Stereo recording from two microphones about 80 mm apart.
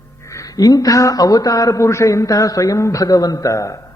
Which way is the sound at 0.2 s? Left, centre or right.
Left.